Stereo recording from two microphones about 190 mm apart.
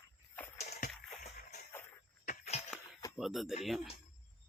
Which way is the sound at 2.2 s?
35° left (ahead or behind).